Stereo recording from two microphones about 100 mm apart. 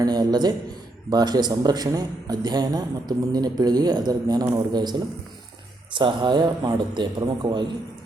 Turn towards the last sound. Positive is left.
turn(degrees=-50)  # may be behind; listen again after turning